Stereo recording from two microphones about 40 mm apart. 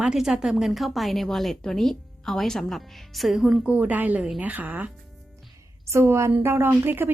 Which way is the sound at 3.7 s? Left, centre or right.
Right.